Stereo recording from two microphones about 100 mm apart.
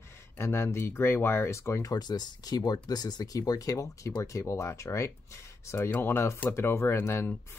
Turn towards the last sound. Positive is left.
turn(degrees=25)  # may be behind; listen again after turning